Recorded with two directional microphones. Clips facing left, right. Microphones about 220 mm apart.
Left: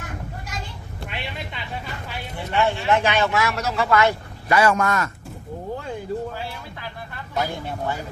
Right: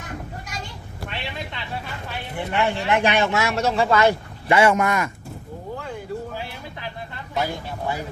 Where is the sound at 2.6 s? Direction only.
15° right (ahead or behind).